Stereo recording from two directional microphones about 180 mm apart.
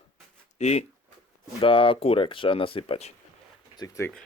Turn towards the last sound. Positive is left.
turn(degrees=20)  # may be behind; listen again after turning